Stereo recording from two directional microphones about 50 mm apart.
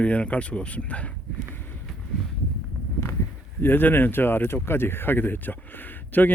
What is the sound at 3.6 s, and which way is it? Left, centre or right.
Speech, left.